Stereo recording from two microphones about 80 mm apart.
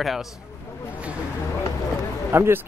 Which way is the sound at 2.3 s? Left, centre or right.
Right.